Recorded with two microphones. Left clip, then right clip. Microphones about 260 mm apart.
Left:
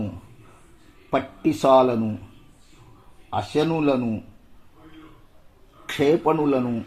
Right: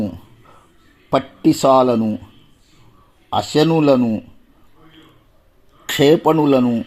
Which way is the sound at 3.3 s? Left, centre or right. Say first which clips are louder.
Right 7 dB; right.